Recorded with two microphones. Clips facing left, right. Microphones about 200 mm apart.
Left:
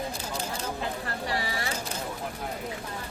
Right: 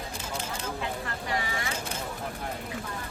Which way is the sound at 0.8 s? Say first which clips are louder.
Left 1 dB; 35° left (ahead or behind).